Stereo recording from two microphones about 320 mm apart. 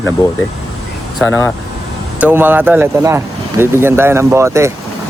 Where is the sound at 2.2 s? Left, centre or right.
Centre.